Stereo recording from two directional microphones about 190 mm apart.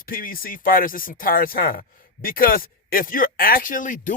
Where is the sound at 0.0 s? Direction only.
50° left (ahead or behind).